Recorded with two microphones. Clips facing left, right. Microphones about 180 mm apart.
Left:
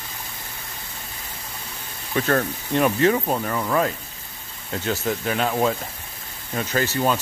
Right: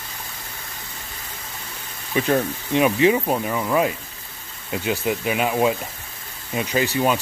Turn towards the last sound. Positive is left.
turn(degrees=-10)  # may be behind; listen again after turning